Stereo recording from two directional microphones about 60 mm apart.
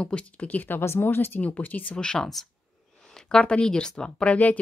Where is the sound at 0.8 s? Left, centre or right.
Left.